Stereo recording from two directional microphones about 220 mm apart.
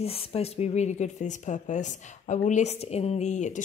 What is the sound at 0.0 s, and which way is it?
Speech, 25° left (ahead or behind).